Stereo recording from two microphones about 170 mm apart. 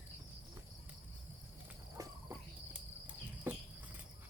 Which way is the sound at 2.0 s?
20° right (ahead or behind).